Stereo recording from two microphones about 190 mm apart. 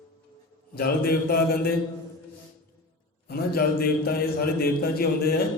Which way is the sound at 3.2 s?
55° left (ahead or behind).